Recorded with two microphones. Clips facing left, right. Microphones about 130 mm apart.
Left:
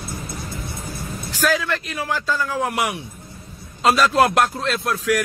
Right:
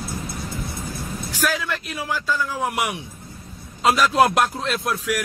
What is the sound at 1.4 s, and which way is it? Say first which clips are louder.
A man's voice: left 4 dB; 10° right (ahead or behind).